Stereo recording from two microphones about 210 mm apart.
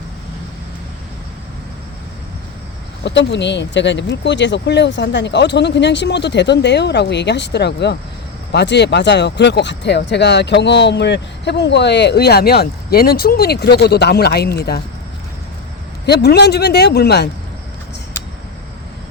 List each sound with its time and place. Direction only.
3.0 s speech: 55° left (ahead or behind)
16.0 s speech: 50° left (ahead or behind)